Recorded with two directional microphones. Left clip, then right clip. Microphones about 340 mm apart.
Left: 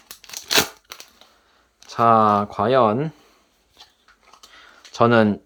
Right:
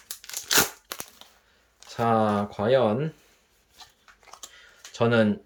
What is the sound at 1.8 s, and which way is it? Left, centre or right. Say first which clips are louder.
Speech: left 8 dB; centre.